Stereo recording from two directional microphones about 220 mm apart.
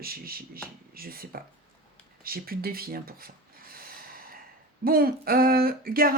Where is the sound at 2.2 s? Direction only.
40° right (ahead or behind).